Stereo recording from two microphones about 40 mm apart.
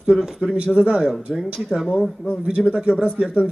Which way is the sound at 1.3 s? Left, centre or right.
Centre.